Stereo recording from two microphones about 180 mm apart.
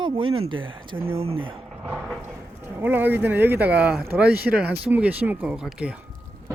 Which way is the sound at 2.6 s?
10° right (ahead or behind).